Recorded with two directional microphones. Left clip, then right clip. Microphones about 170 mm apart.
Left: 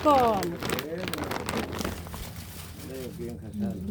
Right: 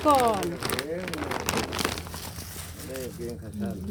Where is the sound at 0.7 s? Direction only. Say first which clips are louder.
Right 1 dB; 20° left (ahead or behind).